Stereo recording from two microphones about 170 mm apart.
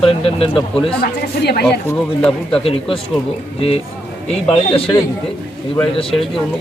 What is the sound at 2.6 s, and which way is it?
Speech, 35° left (ahead or behind).